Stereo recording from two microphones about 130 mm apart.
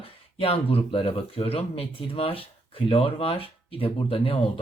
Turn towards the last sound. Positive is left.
turn(degrees=45)  # may be behind; listen again after turning